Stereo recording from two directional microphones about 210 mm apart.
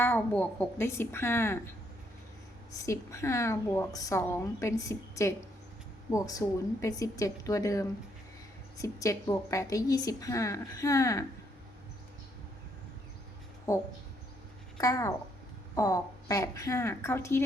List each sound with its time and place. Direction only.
0.0 s a woman's voice: 10° left (ahead or behind)
2.7 s a woman's voice: 15° left (ahead or behind)
13.7 s a woman's voice: 15° left (ahead or behind)